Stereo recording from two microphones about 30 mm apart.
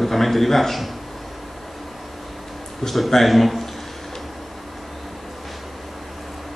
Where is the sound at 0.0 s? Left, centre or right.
Centre.